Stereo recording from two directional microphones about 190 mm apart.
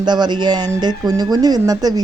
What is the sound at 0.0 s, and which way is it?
Speech, 20° right (ahead or behind).